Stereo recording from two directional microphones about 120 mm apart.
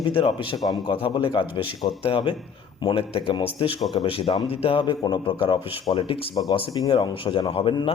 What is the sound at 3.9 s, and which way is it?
Speech, 40° left (ahead or behind).